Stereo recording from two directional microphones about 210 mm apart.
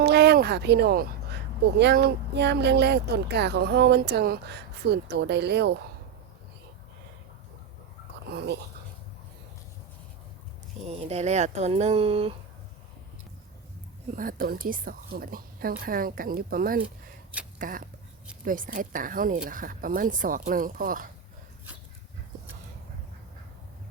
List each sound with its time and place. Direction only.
0.0 s a sound: 50° right (ahead or behind)
1.8 s speech: 50° right (ahead or behind)
10.8 s speech: 30° right (ahead or behind)
14.2 s speech: 40° right (ahead or behind)